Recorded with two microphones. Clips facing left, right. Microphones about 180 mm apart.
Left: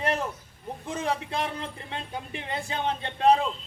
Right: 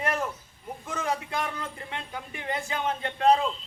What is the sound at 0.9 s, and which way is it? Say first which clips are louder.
Speech: left 1 dB; 30° left (ahead or behind).